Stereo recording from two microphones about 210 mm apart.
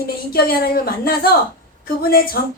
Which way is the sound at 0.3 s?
45° left (ahead or behind).